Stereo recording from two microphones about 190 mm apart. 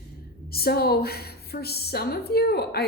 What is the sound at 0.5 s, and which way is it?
Speech, 55° left (ahead or behind).